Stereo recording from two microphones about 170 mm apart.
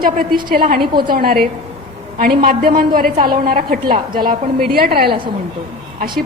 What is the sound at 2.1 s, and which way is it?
A woman's voice, 55° right (ahead or behind).